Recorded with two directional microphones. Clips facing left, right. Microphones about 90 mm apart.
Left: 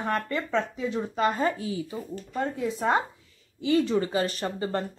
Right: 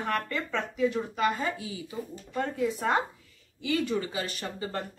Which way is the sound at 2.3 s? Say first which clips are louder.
Even; 20° left (ahead or behind).